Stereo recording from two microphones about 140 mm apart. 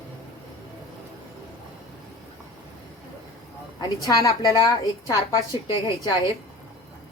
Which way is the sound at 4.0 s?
25° left (ahead or behind).